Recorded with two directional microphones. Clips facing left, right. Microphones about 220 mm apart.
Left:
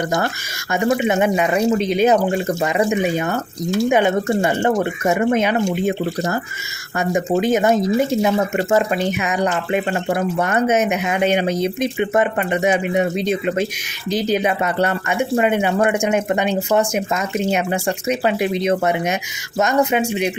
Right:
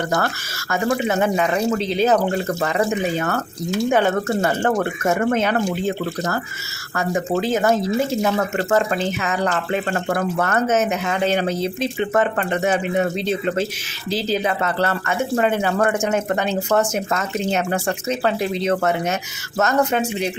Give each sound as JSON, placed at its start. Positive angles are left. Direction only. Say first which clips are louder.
{"t": 0.7, "sound": "speech", "louder": "left 3 dB", "side_deg": 15}